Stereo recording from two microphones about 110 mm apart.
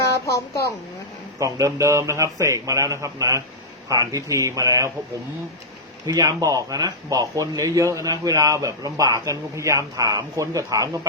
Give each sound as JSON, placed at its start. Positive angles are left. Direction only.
{"t": 0.0, "sound": "a sound", "side_deg": 30}
{"t": 1.4, "sound": "speech", "side_deg": -30}
{"t": 6.1, "sound": "speech", "side_deg": -30}